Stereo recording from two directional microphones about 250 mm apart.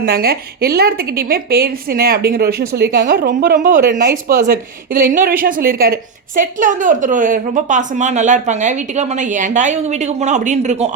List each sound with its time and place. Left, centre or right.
0.0 s a woman's voice: right